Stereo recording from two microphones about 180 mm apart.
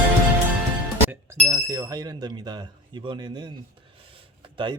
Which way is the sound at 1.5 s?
15° right (ahead or behind).